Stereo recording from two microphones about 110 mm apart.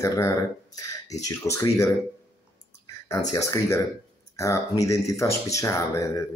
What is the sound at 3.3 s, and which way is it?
Speech, 30° left (ahead or behind).